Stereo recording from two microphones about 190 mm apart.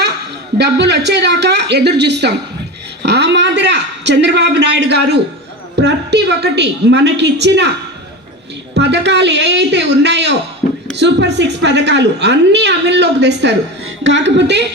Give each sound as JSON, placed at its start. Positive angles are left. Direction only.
{"t": 0.6, "sound": "a woman's voice", "side_deg": -65}
{"t": 8.7, "sound": "a woman's voice", "side_deg": -65}